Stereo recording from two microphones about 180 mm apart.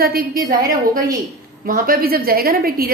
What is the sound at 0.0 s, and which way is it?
Speech, 55° right (ahead or behind).